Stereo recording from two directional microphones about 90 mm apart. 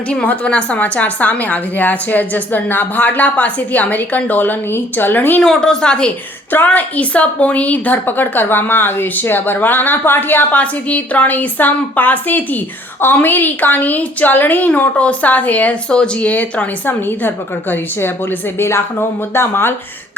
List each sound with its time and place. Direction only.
0.1 s a woman's voice: 10° left (ahead or behind)
5.4 s a woman's voice: 5° left (ahead or behind)
6.5 s a woman's voice: 20° left (ahead or behind)